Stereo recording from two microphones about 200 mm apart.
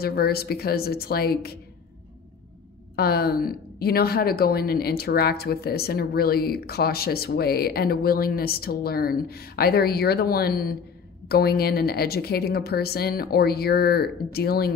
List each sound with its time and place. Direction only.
0.0 s a woman's voice: 50° left (ahead or behind)
3.0 s a woman's voice: 50° left (ahead or behind)